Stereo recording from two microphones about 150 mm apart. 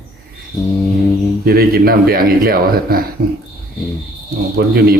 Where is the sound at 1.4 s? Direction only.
90° right.